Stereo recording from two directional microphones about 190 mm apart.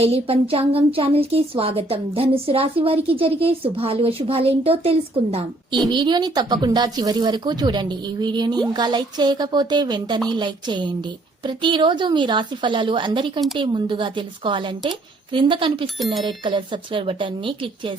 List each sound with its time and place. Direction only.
0.0 s a woman's voice: 30° right (ahead or behind)